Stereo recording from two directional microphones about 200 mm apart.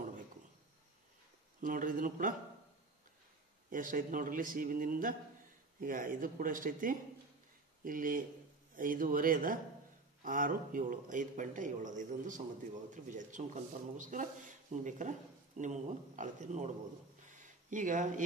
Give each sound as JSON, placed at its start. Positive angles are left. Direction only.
{"t": 1.6, "sound": "speech", "side_deg": -40}
{"t": 3.7, "sound": "a man's voice", "side_deg": -40}
{"t": 17.3, "sound": "a sound", "side_deg": -40}